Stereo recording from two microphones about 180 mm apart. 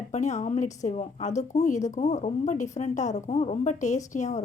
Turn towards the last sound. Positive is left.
turn(degrees=40)  # may be behind; listen again after turning